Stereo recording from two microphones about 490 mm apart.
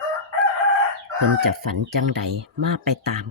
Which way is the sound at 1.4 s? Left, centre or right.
Right.